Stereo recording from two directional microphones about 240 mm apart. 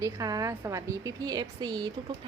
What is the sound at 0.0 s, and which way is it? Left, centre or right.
A woman's voice, centre.